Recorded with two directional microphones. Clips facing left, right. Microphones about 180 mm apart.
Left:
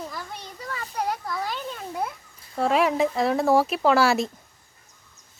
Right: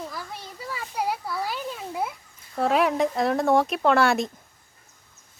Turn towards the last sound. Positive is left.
turn(degrees=0)  # may be behind; listen again after turning